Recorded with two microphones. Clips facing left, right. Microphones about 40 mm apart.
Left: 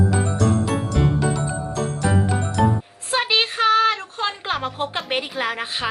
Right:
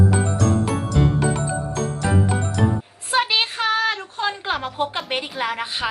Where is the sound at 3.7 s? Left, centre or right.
Left.